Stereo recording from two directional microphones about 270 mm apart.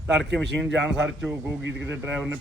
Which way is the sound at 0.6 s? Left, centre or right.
Centre.